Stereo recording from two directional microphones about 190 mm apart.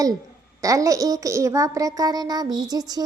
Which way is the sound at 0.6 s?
20° right (ahead or behind).